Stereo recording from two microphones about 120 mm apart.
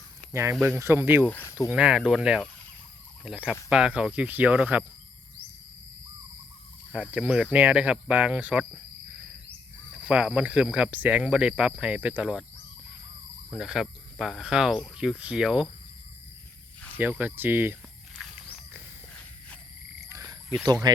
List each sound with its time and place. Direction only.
0.6 s speech: 20° right (ahead or behind)
1.3 s speech: 15° left (ahead or behind)
1.7 s speech: 5° right (ahead or behind)
7.1 s speech: 10° right (ahead or behind)
9.9 s speech: 10° right (ahead or behind)
13.5 s speech: 5° right (ahead or behind)
17.0 s speech: 15° right (ahead or behind)
20.1 s frog: 30° right (ahead or behind)
20.9 s speech: 35° right (ahead or behind)